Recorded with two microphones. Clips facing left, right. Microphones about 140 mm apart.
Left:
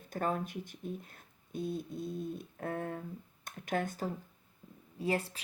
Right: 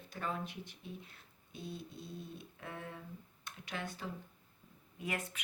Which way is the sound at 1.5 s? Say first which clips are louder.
Left 9 dB; 50° left (ahead or behind).